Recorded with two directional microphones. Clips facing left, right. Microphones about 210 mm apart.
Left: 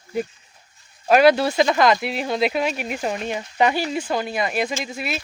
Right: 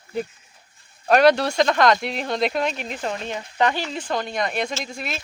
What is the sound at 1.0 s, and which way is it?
Speech, 5° left (ahead or behind).